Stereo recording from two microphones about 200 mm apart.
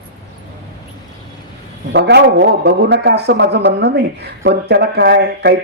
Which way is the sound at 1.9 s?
60° right (ahead or behind).